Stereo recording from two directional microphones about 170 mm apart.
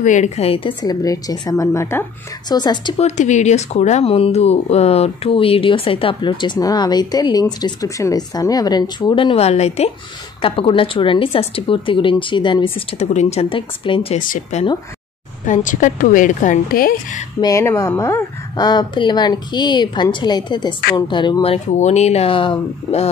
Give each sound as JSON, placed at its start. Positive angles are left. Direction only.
{"t": 0.0, "sound": "speech", "side_deg": 45}
{"t": 0.8, "sound": "speech", "side_deg": 20}
{"t": 3.0, "sound": "speech", "side_deg": 45}
{"t": 14.1, "sound": "a woman's voice", "side_deg": 50}
{"t": 17.4, "sound": "speech", "side_deg": 20}